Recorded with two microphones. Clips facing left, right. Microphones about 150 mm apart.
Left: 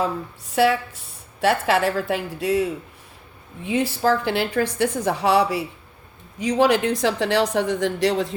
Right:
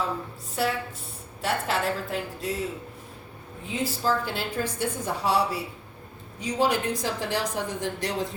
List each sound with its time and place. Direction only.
0.5 s a woman's voice: 85° left
3.7 s a woman's voice: 85° left